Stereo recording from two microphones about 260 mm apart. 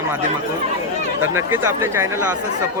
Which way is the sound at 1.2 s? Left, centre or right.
Right.